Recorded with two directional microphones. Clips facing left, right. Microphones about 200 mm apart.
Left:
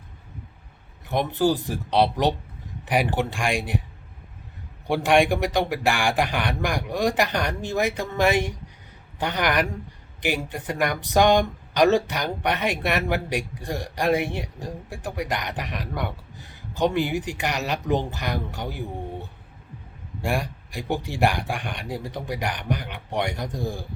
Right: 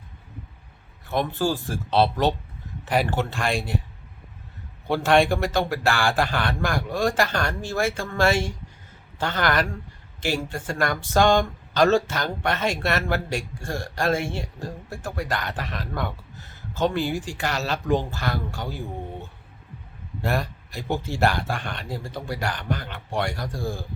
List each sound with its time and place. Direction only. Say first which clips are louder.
1.0 s speech: left 2 dB; 20° left (ahead or behind)
4.9 s speech: even; 15° left (ahead or behind)
20.2 s speech: even; 10° left (ahead or behind)